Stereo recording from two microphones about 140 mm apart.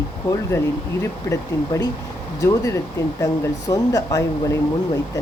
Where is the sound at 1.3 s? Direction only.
25° left (ahead or behind).